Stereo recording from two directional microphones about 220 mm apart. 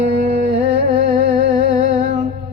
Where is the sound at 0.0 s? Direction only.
35° right (ahead or behind).